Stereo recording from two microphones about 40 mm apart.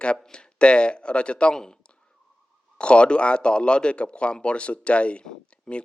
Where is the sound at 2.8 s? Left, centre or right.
Left.